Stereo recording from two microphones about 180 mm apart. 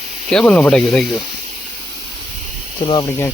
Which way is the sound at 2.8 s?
30° left (ahead or behind).